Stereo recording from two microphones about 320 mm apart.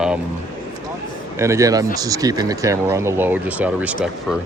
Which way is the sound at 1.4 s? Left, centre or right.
Centre.